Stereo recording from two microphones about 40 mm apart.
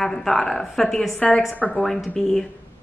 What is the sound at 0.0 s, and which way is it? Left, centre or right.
A woman's voice, centre.